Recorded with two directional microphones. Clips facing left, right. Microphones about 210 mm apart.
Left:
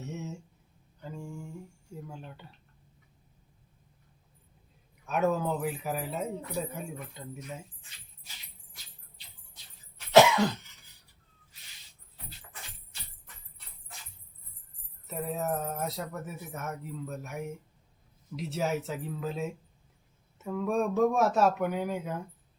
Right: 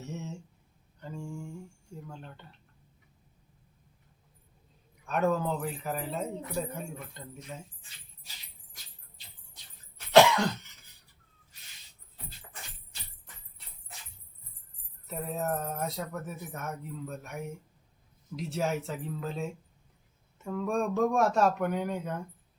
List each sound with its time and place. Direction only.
0.0 s a sound: centre (ahead or behind)
5.0 s speech: 5° left (ahead or behind)
10.1 s cough: 5° left (ahead or behind)
15.0 s speech: centre (ahead or behind)